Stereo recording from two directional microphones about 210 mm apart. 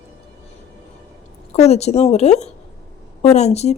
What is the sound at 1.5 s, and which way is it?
Speech, 30° left (ahead or behind).